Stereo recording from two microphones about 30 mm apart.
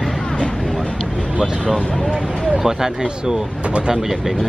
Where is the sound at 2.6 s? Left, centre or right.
Centre.